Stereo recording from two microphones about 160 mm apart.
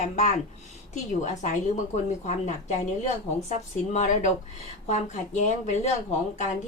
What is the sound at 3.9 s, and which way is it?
A woman's voice, 50° left (ahead or behind).